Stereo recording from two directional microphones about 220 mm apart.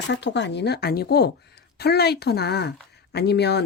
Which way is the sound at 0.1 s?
55° left (ahead or behind).